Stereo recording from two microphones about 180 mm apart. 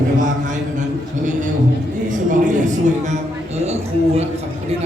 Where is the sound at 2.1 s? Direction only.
45° right (ahead or behind).